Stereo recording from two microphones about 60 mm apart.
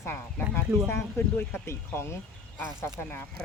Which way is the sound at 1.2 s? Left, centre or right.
Left.